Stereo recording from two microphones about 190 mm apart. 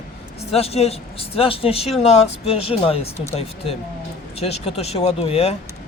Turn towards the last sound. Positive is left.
turn(degrees=35)  # may be behind; listen again after turning